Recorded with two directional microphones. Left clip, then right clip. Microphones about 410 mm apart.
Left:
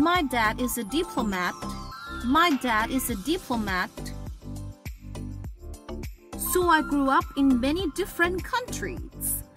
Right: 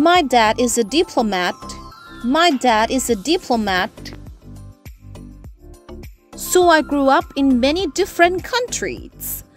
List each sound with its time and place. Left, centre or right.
0.0 s speech: centre
2.6 s speech: centre
5.9 s music: centre
6.5 s speech: centre